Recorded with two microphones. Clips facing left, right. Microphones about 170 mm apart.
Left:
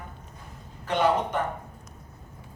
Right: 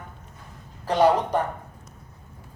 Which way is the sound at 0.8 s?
35° right (ahead or behind).